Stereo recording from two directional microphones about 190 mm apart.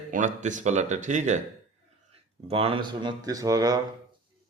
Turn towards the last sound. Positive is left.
turn(degrees=-20)  # may be behind; listen again after turning